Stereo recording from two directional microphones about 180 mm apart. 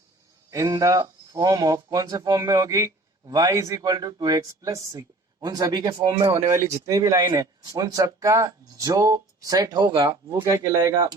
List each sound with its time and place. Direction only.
0.5 s speech: 20° right (ahead or behind)